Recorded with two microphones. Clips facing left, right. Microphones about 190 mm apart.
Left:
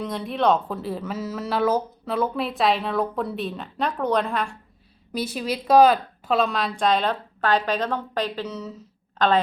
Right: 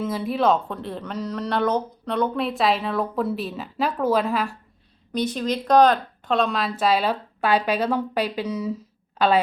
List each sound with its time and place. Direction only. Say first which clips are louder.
0.0 s speech: right 1 dB; centre (ahead or behind)
5.1 s a woman's voice: right 3 dB; 5° left (ahead or behind); by 9.4 s 10° right (ahead or behind)